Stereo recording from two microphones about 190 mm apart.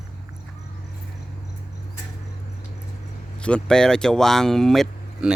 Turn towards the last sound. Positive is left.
turn(degrees=0)  # may be behind; listen again after turning